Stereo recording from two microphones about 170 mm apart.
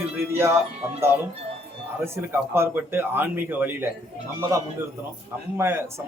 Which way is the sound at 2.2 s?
15° right (ahead or behind).